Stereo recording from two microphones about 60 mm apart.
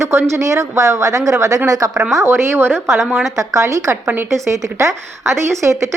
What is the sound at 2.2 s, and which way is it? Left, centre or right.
Speech, right.